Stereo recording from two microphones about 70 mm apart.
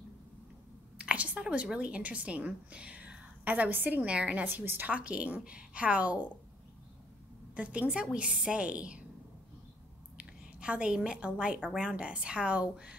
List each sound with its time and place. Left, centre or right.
0.9 s a woman's voice: centre
7.5 s a woman's voice: centre
10.1 s a woman's voice: centre